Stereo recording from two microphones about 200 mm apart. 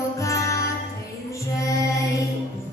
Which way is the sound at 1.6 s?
15° left (ahead or behind).